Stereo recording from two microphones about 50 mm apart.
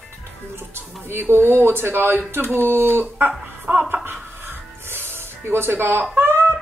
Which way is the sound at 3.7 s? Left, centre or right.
Right.